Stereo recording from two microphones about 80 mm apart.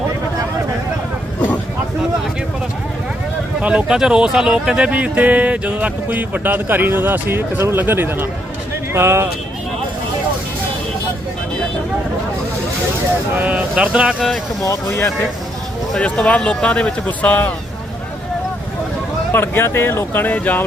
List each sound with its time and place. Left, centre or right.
3.6 s speech: centre; by 9.3 s right
13.3 s speech: centre
16.0 s speech: centre
19.3 s speech: left